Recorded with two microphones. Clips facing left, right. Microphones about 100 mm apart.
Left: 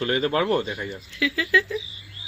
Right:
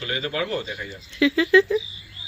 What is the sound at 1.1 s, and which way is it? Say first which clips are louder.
Speech: right 6 dB; 30° right (ahead or behind).